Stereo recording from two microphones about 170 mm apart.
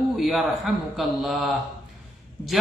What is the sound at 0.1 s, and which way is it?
Speech, centre (ahead or behind).